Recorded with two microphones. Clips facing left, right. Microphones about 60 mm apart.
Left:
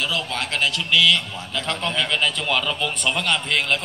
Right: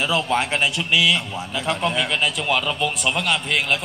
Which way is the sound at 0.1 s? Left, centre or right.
Right.